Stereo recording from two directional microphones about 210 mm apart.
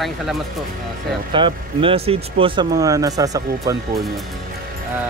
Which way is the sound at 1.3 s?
25° right (ahead or behind).